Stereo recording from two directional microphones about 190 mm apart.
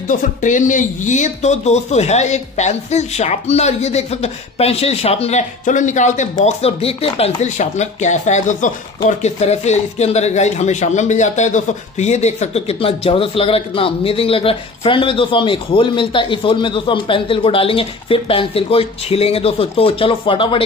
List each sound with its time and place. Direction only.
0.1 s speech: 45° left (ahead or behind); by 20.6 s 25° left (ahead or behind)